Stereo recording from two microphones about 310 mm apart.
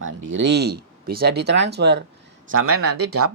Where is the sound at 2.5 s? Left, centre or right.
Right.